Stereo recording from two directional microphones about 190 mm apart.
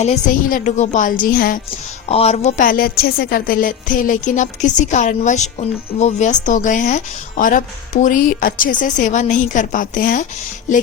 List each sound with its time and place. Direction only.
0.0 s a woman's voice: 40° left (ahead or behind)
2.0 s a woman's voice: 35° left (ahead or behind)